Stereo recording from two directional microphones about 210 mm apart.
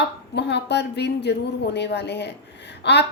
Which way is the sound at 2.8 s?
55° left (ahead or behind).